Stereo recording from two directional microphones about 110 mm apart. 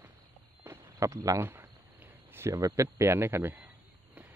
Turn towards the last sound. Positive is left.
turn(degrees=-20)  # may be behind; listen again after turning